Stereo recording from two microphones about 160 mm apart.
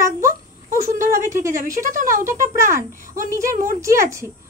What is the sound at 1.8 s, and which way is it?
Speech, 55° right (ahead or behind).